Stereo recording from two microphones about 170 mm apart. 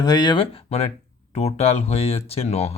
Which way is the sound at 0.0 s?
25° left (ahead or behind).